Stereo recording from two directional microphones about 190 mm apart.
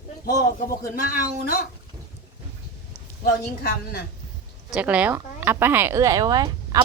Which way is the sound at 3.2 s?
60° left (ahead or behind).